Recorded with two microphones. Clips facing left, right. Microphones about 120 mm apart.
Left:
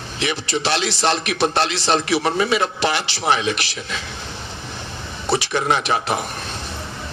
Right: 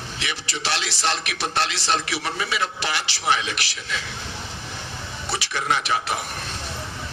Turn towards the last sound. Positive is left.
turn(degrees=25)  # may be behind; listen again after turning